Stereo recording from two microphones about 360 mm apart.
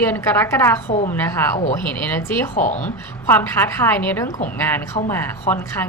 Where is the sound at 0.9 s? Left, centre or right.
Centre.